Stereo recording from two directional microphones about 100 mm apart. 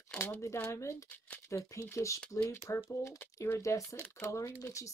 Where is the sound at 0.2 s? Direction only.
25° left (ahead or behind).